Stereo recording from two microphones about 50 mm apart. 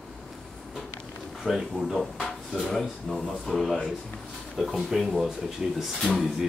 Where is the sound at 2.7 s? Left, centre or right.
Centre.